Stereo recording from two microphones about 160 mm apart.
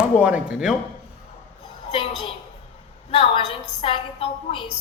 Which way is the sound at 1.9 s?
35° left (ahead or behind).